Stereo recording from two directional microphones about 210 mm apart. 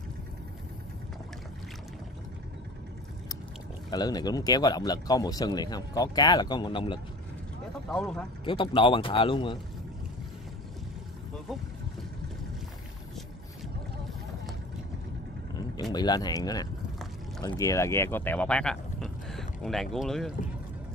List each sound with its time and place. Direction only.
3.9 s speech: 20° left (ahead or behind)
7.9 s speech: centre (ahead or behind)
8.5 s speech: 25° left (ahead or behind)
15.8 s speech: 20° left (ahead or behind); by 20.3 s centre (ahead or behind)